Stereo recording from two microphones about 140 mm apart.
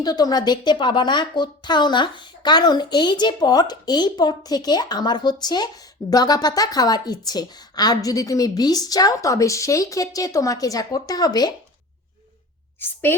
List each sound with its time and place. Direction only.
0.0 s a woman's voice: 30° left (ahead or behind)
12.8 s a woman's voice: 15° left (ahead or behind)